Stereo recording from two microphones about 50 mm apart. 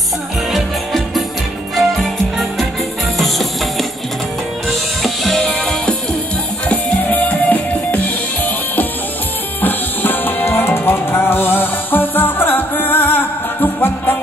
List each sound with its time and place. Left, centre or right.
0.5 s music: centre
5.0 s music: centre
6.7 s music: left